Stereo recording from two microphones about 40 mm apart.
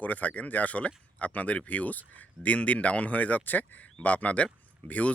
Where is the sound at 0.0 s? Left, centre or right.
Left.